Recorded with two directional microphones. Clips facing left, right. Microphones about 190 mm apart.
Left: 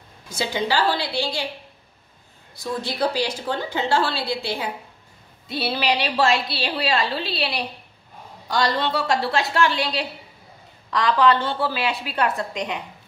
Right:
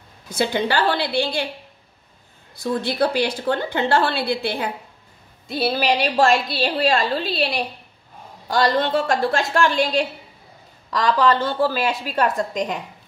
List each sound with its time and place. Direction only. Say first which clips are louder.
0.4 s a woman's voice: right 2 dB; 55° right (ahead or behind)
2.6 s a woman's voice: right 4 dB; 55° right (ahead or behind)
5.5 s a woman's voice: right 3 dB; 45° right (ahead or behind)